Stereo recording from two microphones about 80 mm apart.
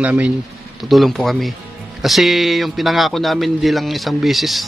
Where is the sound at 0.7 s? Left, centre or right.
Centre.